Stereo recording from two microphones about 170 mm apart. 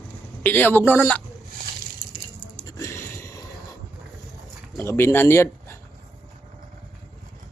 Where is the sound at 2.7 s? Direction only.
20° left (ahead or behind).